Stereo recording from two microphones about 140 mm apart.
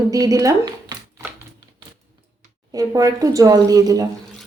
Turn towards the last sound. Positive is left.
turn(degrees=-25)  # may be behind; listen again after turning